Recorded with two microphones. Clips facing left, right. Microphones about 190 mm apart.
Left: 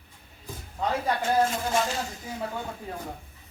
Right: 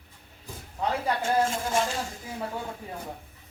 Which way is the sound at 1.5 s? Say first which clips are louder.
Even; 50° right (ahead or behind).